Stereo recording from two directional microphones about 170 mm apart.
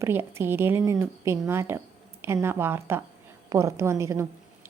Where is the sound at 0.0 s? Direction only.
15° right (ahead or behind).